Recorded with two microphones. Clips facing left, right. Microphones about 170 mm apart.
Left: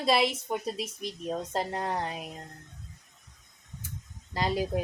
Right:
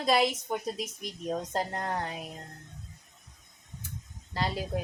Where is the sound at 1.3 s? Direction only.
5° left (ahead or behind).